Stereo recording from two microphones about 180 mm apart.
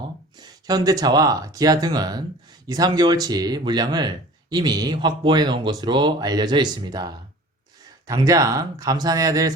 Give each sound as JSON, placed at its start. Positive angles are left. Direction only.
{"t": 0.3, "sound": "speech", "side_deg": -20}